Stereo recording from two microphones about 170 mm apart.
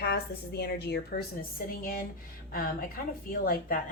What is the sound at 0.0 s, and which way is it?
A woman's voice, 70° left (ahead or behind).